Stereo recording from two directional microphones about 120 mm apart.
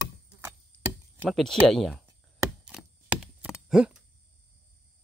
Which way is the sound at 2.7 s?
10° right (ahead or behind).